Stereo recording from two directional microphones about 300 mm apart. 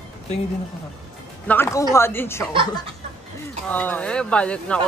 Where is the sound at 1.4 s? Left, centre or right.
Centre.